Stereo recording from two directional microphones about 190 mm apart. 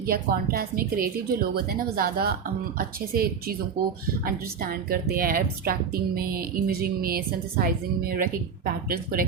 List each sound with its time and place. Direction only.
0.1 s a woman's voice: 50° right (ahead or behind)